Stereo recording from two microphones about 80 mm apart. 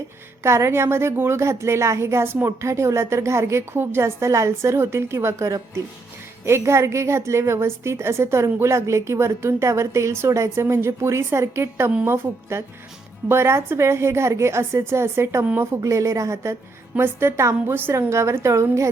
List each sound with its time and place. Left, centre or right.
0.4 s a woman's voice: right
5.5 s speech: right
6.4 s a woman's voice: right